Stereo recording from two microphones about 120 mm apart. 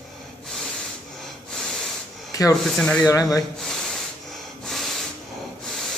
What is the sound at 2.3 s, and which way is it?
Speech, 30° left (ahead or behind).